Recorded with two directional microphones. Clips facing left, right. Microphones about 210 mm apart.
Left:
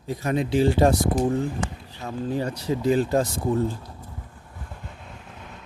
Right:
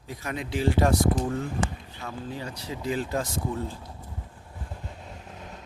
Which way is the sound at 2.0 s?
45° left (ahead or behind).